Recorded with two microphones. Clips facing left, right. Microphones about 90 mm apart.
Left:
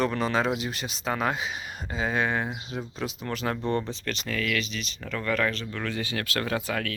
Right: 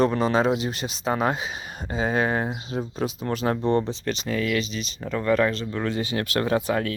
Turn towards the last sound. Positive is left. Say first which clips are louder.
# right 6 dB
turn(degrees=-25)  # may be behind; listen again after turning